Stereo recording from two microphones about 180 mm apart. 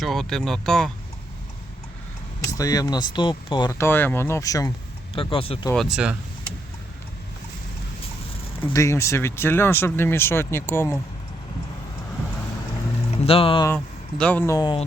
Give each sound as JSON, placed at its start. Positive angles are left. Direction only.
{"t": 0.0, "sound": "speech", "side_deg": 0}
{"t": 2.5, "sound": "speech", "side_deg": 20}
{"t": 5.1, "sound": "speech", "side_deg": 30}
{"t": 5.7, "sound": "speech", "side_deg": 0}
{"t": 8.7, "sound": "speech", "side_deg": 15}
{"t": 13.1, "sound": "a sound", "side_deg": 30}
{"t": 13.7, "sound": "a man's voice", "side_deg": 5}